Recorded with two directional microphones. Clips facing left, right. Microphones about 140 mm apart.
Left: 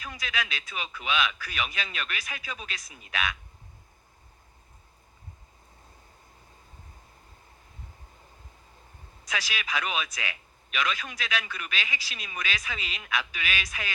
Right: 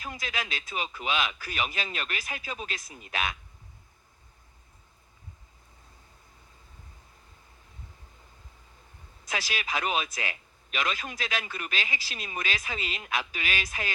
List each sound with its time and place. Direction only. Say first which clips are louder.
0.0 s speech: left 1 dB; 30° right (ahead or behind)
9.3 s speech: even; 30° right (ahead or behind)